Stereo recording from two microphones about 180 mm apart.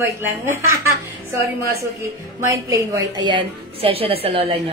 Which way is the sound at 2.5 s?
15° right (ahead or behind).